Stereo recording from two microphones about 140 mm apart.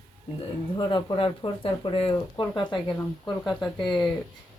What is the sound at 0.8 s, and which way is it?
Speech, 30° left (ahead or behind).